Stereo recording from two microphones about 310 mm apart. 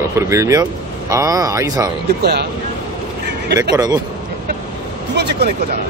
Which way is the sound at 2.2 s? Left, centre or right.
Right.